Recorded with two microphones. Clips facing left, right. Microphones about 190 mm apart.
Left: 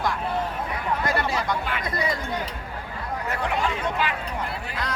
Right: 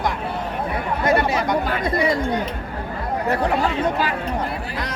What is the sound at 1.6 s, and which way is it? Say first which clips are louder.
Chatter: right 7 dB; 40° right (ahead or behind).